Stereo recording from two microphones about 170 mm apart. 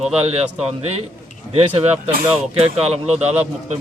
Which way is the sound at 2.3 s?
35° right (ahead or behind).